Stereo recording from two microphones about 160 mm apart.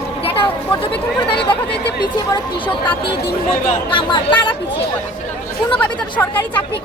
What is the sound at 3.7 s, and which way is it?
Speech, 30° left (ahead or behind).